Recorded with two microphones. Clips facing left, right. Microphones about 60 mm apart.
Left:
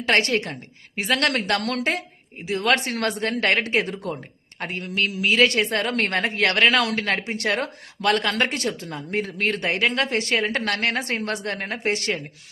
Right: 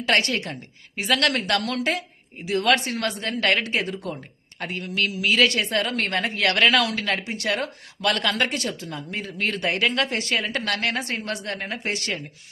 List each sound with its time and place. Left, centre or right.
0.2 s a woman's voice: left
2.5 s speech: left
2.7 s speech: left
3.7 s speech: left
4.8 s a woman's voice: left
6.8 s a woman's voice: left